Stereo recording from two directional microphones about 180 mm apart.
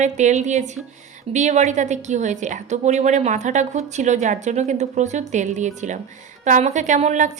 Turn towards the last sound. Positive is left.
turn(degrees=-40)  # may be behind; listen again after turning